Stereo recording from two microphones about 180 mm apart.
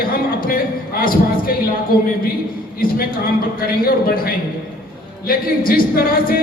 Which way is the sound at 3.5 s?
55° left (ahead or behind).